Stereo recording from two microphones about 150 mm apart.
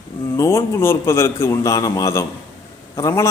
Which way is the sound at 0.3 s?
20° left (ahead or behind).